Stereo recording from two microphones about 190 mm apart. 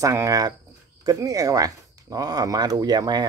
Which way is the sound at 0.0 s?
15° right (ahead or behind).